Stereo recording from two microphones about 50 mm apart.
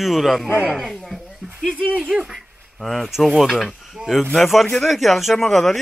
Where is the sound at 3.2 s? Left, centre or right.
Centre.